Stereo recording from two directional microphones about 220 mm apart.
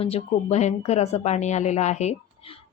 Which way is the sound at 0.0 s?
30° left (ahead or behind).